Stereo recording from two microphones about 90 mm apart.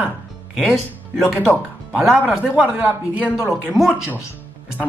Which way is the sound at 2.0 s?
5° right (ahead or behind).